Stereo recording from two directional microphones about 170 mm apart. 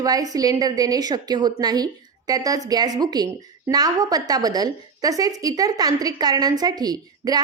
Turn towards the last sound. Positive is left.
turn(degrees=-20)  # may be behind; listen again after turning